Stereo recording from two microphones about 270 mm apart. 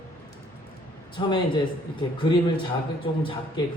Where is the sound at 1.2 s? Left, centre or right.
Centre.